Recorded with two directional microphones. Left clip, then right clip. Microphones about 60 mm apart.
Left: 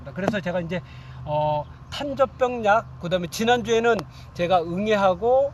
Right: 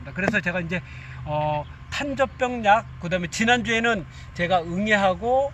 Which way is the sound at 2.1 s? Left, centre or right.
Left.